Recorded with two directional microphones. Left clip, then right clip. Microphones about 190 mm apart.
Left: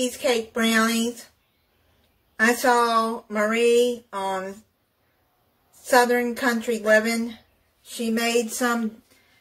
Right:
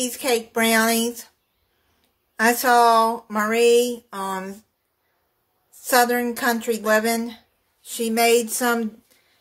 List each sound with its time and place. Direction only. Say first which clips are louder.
0.0 s speech: even; 55° right (ahead or behind)
2.3 s speech: right 2 dB; 55° right (ahead or behind)
5.9 s speech: even; 55° right (ahead or behind)